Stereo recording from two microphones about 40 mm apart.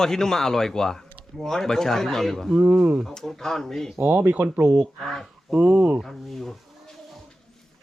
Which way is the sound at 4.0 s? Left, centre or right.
Right.